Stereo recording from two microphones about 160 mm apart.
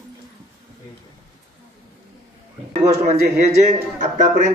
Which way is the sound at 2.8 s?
45° right (ahead or behind).